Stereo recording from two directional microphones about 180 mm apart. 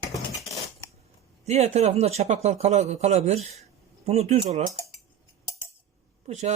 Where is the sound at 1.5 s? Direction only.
35° right (ahead or behind).